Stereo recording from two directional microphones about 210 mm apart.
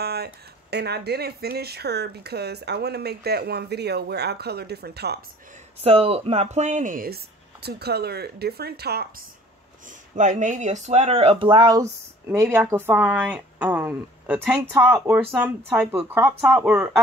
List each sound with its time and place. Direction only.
0.0 s speech: 50° right (ahead or behind)
5.8 s speech: 30° right (ahead or behind); by 9.0 s 50° right (ahead or behind)
10.1 s speech: 35° right (ahead or behind); by 16.9 s 5° right (ahead or behind)